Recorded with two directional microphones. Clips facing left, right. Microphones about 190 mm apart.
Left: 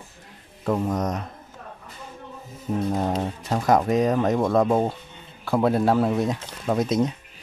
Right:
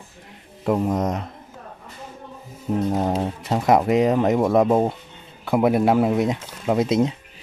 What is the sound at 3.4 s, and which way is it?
Speech, 25° right (ahead or behind).